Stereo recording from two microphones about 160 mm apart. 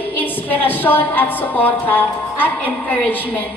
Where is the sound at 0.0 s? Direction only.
10° left (ahead or behind).